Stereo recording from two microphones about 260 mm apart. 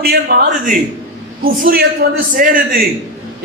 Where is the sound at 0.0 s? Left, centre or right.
Right.